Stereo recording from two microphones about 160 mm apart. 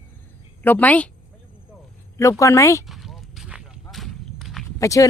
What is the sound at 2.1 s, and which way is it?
Speech, 20° left (ahead or behind).